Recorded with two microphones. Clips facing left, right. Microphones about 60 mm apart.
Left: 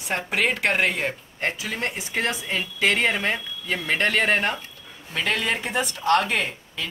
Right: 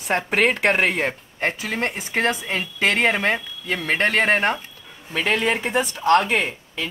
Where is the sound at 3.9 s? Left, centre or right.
Centre.